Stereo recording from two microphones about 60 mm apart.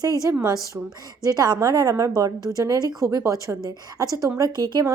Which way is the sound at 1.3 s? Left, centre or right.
Right.